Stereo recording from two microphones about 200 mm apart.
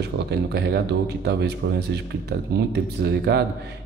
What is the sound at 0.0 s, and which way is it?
Speech, 55° right (ahead or behind).